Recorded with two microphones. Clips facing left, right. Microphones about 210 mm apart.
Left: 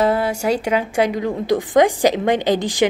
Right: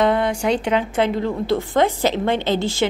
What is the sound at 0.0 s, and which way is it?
A woman's voice, 5° left (ahead or behind).